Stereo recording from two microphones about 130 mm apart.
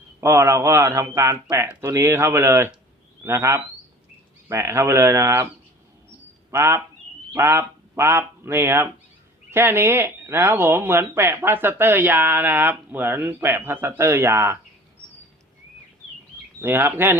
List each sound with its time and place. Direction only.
0.2 s a man's voice: 20° right (ahead or behind)
6.5 s a man's voice: 20° right (ahead or behind)
16.6 s speech: 15° right (ahead or behind)